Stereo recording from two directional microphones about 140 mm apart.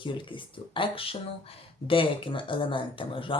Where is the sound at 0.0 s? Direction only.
35° left (ahead or behind).